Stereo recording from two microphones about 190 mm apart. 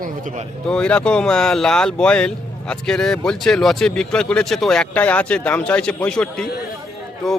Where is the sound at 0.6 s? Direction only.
5° left (ahead or behind).